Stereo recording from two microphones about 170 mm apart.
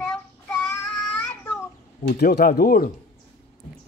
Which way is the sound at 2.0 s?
70° left (ahead or behind).